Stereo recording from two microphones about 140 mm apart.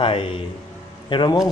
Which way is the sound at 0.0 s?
40° left (ahead or behind).